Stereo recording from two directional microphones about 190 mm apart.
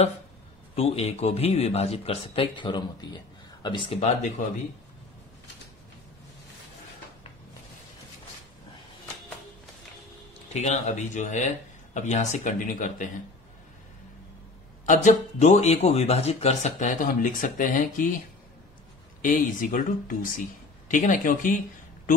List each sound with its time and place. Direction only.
0.7 s speech: 30° left (ahead or behind)
10.5 s speech: 35° left (ahead or behind)
14.9 s speech: 40° left (ahead or behind)
19.2 s speech: 45° left (ahead or behind)